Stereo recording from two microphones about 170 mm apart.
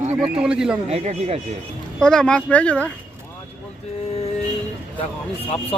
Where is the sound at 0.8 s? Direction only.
40° right (ahead or behind).